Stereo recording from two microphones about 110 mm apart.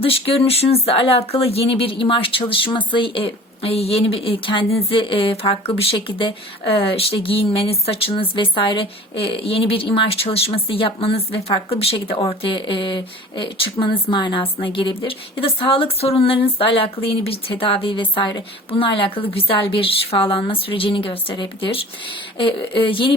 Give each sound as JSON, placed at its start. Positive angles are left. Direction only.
{"t": 0.0, "sound": "a woman's voice", "side_deg": 60}